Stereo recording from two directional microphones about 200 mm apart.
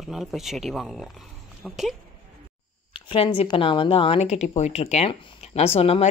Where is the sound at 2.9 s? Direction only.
25° left (ahead or behind).